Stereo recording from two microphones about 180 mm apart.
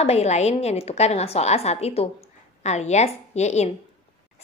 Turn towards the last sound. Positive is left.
turn(degrees=40)  # may be behind; listen again after turning